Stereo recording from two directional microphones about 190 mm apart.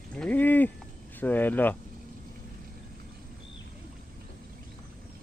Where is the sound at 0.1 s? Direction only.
5° left (ahead or behind).